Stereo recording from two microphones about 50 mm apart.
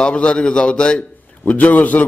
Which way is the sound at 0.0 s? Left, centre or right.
Centre.